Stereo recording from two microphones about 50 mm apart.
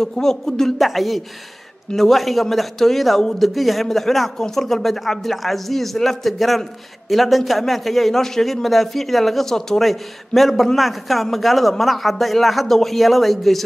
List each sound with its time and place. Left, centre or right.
0.0 s a man's voice: centre